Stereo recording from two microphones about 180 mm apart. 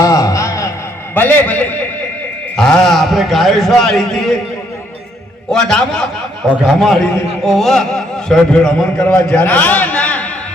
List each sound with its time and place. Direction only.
0.0 s a sound: 20° left (ahead or behind)
1.1 s a man's voice: 10° left (ahead or behind)
5.5 s a man's voice: 5° left (ahead or behind)